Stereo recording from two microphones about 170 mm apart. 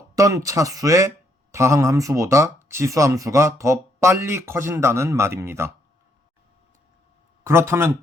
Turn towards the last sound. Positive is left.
turn(degrees=-15)  # may be behind; listen again after turning